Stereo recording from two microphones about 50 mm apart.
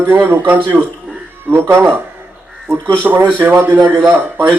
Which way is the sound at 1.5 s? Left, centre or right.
Right.